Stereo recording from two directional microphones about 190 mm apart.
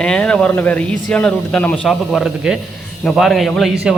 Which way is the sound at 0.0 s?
5° left (ahead or behind).